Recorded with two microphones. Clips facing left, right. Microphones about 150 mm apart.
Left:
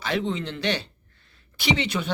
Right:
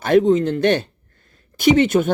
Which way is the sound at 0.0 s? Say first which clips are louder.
Right 13 dB; 45° right (ahead or behind).